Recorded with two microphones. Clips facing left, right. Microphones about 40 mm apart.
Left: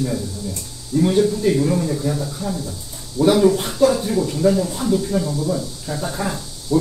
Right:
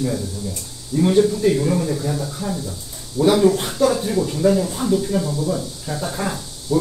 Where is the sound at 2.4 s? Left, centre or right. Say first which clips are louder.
Even; right.